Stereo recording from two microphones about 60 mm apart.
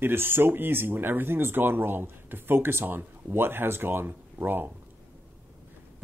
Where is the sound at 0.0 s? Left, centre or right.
Right.